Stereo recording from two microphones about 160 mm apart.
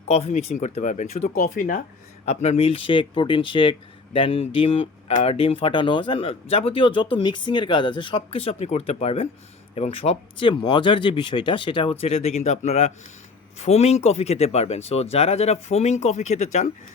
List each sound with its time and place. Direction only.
0.1 s speech: 40° left (ahead or behind)
1.4 s speech: 55° left (ahead or behind)
2.2 s speech: 45° left (ahead or behind)